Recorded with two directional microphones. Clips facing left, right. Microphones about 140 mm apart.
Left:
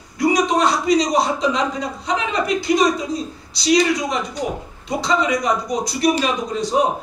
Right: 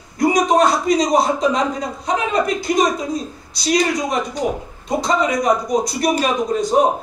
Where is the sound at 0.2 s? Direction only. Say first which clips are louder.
Right 2 dB; 50° right (ahead or behind).